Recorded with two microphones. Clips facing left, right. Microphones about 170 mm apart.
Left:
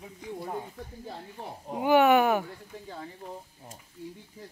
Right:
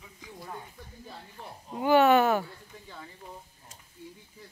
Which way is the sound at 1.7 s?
15° left (ahead or behind).